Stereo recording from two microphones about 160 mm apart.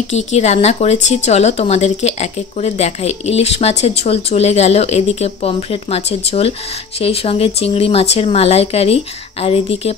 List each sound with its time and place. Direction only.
0.1 s a woman's voice: 45° left (ahead or behind)